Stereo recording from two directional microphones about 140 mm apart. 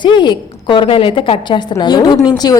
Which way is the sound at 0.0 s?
35° left (ahead or behind).